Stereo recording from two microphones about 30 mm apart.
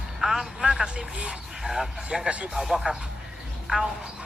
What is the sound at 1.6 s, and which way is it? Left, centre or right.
Speech, centre.